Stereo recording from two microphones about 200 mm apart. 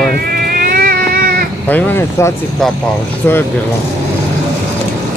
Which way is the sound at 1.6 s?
10° left (ahead or behind).